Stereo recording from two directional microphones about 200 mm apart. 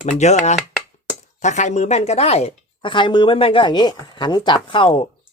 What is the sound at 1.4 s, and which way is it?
A woman's voice, 35° left (ahead or behind).